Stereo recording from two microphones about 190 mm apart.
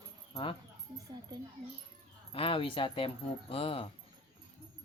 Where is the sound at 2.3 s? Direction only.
30° left (ahead or behind).